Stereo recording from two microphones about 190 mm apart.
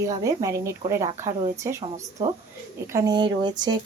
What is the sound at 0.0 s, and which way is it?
Speech, 15° right (ahead or behind).